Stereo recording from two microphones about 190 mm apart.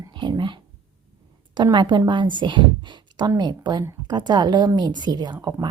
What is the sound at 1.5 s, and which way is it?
A woman's voice, 25° right (ahead or behind).